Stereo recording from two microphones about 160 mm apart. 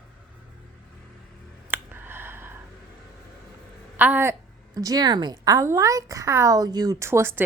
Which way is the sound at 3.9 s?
10° right (ahead or behind).